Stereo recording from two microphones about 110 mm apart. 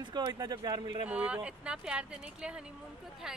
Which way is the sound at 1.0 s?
10° right (ahead or behind).